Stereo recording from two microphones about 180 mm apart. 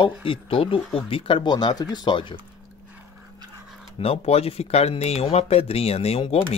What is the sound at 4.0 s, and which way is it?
Speech, 35° left (ahead or behind).